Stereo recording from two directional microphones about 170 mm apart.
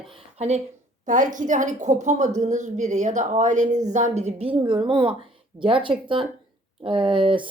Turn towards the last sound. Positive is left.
turn(degrees=-30)  # may be behind; listen again after turning